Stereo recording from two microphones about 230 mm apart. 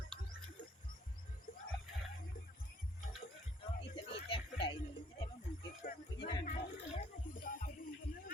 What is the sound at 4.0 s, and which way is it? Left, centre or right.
Music, left.